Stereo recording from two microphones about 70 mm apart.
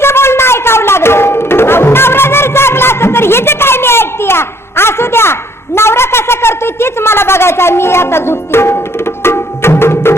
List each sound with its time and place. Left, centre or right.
0.0 s tabla: left